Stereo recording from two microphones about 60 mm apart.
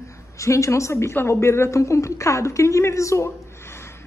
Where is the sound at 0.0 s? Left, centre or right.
Left.